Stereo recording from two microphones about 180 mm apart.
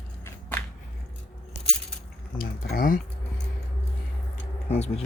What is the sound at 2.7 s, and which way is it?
Speech, 50° left (ahead or behind).